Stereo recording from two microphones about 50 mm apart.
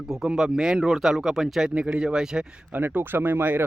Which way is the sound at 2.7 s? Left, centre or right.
Right.